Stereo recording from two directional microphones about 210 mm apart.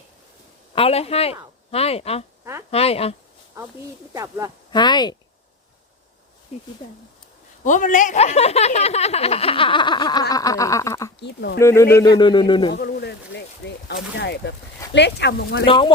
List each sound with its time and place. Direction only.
0.8 s speech: 30° left (ahead or behind)
2.4 s speech: 10° right (ahead or behind)
2.6 s speech: 30° left (ahead or behind)
4.1 s speech: 15° right (ahead or behind)
4.7 s speech: 20° left (ahead or behind)
6.5 s speech: 30° left (ahead or behind); by 11.1 s 15° left (ahead or behind)
11.2 s speech: 55° left (ahead or behind)
11.6 s speech: 10° left (ahead or behind)
12.7 s speech: 50° left (ahead or behind)
15.6 s speech: 25° left (ahead or behind)